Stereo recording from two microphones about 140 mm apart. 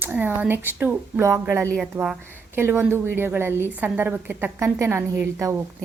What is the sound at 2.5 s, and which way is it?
A woman's voice, 15° right (ahead or behind).